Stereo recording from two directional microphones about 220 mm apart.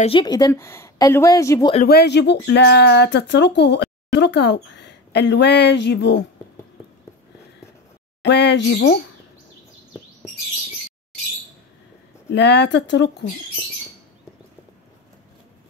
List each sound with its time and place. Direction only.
0.0 s a woman's voice: 20° left (ahead or behind)
1.9 s speech: 45° left (ahead or behind)
8.2 s speech: 50° left (ahead or behind)
12.3 s speech: 50° left (ahead or behind)